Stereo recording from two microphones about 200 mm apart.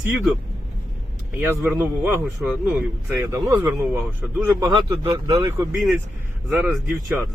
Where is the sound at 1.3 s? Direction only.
10° right (ahead or behind).